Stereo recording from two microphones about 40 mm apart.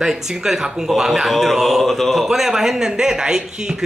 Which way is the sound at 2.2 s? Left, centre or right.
Centre.